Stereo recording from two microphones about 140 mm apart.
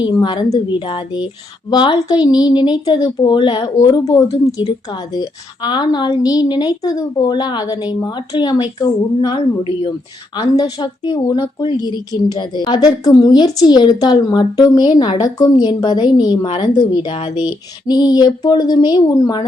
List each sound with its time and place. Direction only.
0.0 s a woman's voice: 35° left (ahead or behind)